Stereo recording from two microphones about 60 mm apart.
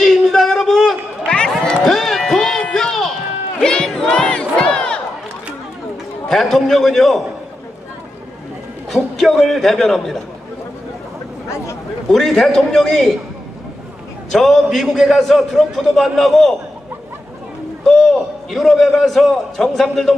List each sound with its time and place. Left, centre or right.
0.0 s a sound: centre
3.6 s battle cry: centre
4.1 s crowd: centre
6.2 s a man's voice: centre
8.9 s a man's voice: centre
11.4 s a sound: left
12.1 s a man's voice: centre
14.3 s a man's voice: centre
17.8 s a man's voice: centre